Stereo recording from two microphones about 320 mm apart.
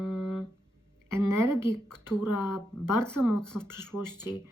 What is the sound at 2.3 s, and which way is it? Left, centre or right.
Speech, left.